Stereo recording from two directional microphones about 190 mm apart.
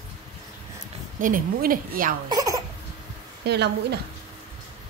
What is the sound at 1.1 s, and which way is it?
A woman's voice, 45° right (ahead or behind).